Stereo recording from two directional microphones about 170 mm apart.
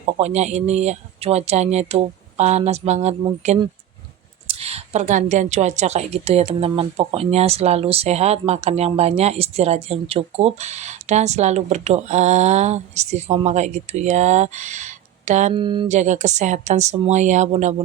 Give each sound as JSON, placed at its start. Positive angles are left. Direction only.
{"t": 0.0, "sound": "a woman's voice", "side_deg": -40}
{"t": 15.5, "sound": "speech", "side_deg": -30}
{"t": 15.9, "sound": "speech", "side_deg": -45}